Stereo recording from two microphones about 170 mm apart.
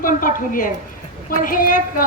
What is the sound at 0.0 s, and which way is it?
A woman's voice, 55° left (ahead or behind).